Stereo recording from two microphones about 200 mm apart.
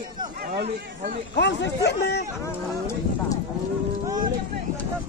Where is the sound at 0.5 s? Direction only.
55° right (ahead or behind).